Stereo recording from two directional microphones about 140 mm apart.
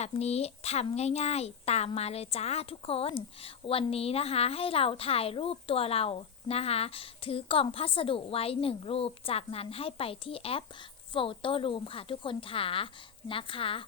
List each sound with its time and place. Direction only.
0.0 s a woman's voice: 50° left (ahead or behind)